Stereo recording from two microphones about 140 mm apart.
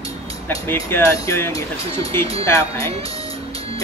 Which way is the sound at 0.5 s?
20° left (ahead or behind).